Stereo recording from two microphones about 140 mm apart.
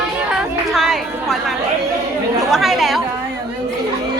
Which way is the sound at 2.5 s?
Centre (ahead or behind).